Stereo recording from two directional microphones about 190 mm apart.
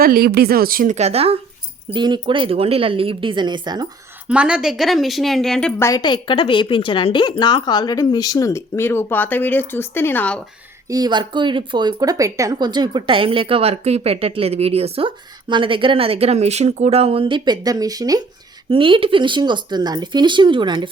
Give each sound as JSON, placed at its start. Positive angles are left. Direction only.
{"t": 0.0, "sound": "a woman's voice", "side_deg": -50}
{"t": 4.3, "sound": "speech", "side_deg": -5}
{"t": 5.8, "sound": "a woman's voice", "side_deg": 20}
{"t": 10.8, "sound": "speech", "side_deg": -20}